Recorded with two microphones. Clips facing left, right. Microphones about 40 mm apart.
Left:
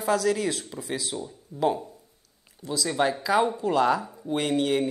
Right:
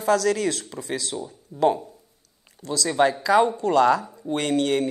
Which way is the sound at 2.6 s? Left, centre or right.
Centre.